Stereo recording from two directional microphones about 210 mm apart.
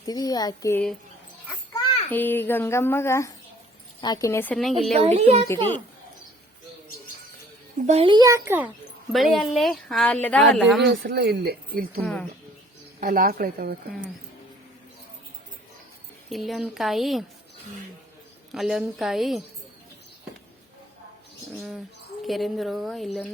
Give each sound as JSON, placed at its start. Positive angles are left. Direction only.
{"t": 0.0, "sound": "a child's voice", "side_deg": 20}
{"t": 1.7, "sound": "a sound", "side_deg": 25}
{"t": 2.0, "sound": "a child's voice", "side_deg": 10}
{"t": 5.0, "sound": "a child's voice", "side_deg": -30}
{"t": 7.9, "sound": "speech", "side_deg": -25}
{"t": 10.8, "sound": "speech", "side_deg": -50}
{"t": 12.0, "sound": "speech", "side_deg": 5}
{"t": 13.0, "sound": "speech", "side_deg": -40}
{"t": 16.3, "sound": "speech", "side_deg": 0}
{"t": 18.5, "sound": "speech", "side_deg": 0}
{"t": 22.3, "sound": "speech", "side_deg": 0}